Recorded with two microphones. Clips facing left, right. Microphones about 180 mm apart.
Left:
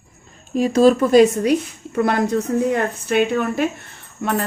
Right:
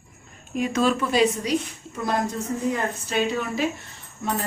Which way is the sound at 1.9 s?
65° left (ahead or behind).